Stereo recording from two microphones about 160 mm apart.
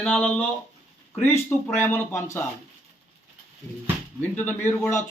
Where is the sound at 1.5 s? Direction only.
15° left (ahead or behind).